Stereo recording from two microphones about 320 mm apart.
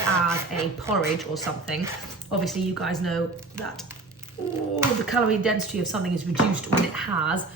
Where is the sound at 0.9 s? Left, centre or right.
Centre.